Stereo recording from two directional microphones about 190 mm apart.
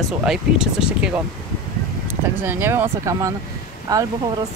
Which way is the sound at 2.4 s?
10° right (ahead or behind).